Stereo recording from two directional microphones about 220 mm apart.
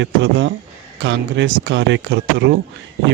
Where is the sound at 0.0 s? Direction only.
55° right (ahead or behind).